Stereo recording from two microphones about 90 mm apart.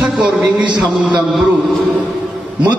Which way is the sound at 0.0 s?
15° right (ahead or behind).